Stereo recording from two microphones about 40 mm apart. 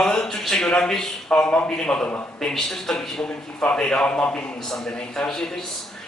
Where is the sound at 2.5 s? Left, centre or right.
Centre.